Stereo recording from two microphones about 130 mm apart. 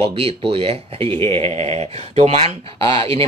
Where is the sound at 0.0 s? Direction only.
50° right (ahead or behind).